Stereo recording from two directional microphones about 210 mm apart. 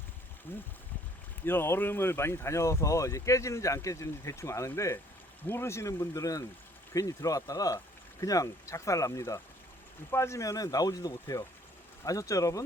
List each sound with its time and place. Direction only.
1.5 s speech: 10° left (ahead or behind)